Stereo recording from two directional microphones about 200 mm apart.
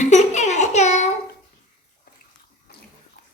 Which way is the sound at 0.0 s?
35° left (ahead or behind).